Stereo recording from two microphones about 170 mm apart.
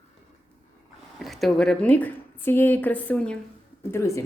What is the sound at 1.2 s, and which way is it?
A woman's voice, centre (ahead or behind).